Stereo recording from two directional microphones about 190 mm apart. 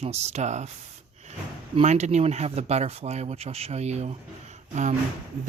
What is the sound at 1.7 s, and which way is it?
Speech, 35° right (ahead or behind).